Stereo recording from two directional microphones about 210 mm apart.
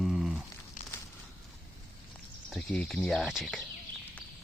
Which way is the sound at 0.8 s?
40° left (ahead or behind).